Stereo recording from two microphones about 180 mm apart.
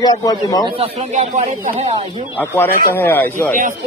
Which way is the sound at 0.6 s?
30° right (ahead or behind).